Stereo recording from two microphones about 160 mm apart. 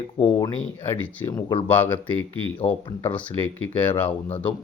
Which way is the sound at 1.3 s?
25° left (ahead or behind).